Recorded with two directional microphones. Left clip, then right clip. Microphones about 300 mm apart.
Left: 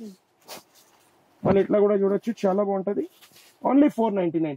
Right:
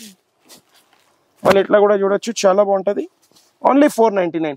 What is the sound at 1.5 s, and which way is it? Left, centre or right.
Speech, centre.